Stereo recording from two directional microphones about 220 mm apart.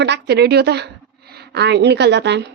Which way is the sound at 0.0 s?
50° right (ahead or behind).